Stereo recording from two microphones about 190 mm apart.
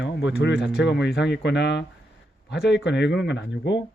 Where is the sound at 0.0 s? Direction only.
70° left (ahead or behind).